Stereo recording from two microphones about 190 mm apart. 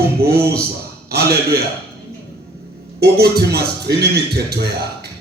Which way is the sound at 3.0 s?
55° right (ahead or behind).